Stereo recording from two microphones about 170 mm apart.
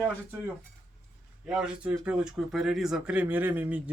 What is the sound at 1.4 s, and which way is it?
A man's voice, 5° right (ahead or behind).